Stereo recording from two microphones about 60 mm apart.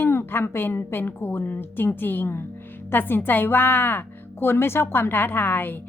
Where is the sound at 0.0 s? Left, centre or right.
Left.